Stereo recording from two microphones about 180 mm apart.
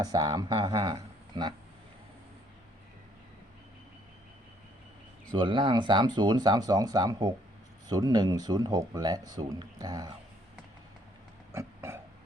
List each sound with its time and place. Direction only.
0.0 s speech: 20° right (ahead or behind)
0.9 s a sound: 25° right (ahead or behind)
5.3 s speech: 25° right (ahead or behind)
11.5 s burping: 15° right (ahead or behind)